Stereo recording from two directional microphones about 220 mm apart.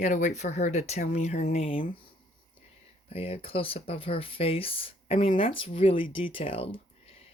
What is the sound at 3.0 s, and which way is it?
Speech, 25° left (ahead or behind).